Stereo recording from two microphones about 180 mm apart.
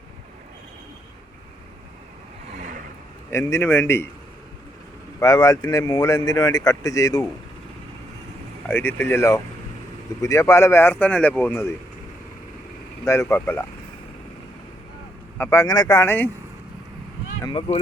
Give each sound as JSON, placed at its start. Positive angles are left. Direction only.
{"t": 2.6, "sound": "vehicle", "side_deg": -45}
{"t": 3.2, "sound": "speech", "side_deg": 15}
{"t": 5.2, "sound": "speech", "side_deg": 20}
{"t": 8.6, "sound": "speech", "side_deg": 10}
{"t": 13.1, "sound": "speech", "side_deg": 15}
{"t": 15.4, "sound": "speech", "side_deg": 15}
{"t": 17.4, "sound": "speech", "side_deg": 30}